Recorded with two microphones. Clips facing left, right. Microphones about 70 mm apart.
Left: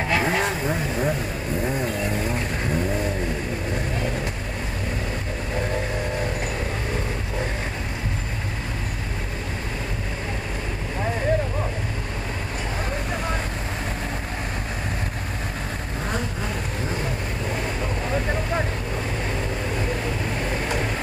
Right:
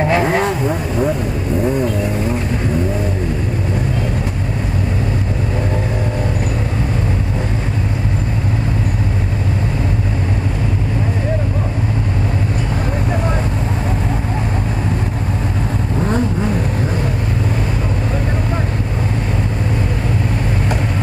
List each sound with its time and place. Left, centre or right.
0.2 s vehicle: right